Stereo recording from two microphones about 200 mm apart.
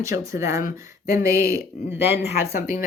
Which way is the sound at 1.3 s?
45° left (ahead or behind).